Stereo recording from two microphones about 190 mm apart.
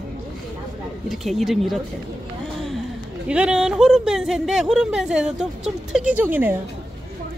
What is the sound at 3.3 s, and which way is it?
Speech, 5° right (ahead or behind).